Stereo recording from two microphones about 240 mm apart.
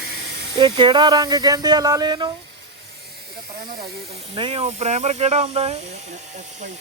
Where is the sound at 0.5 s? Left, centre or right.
Centre.